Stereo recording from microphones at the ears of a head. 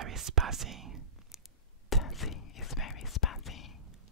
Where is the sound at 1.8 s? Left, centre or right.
Left.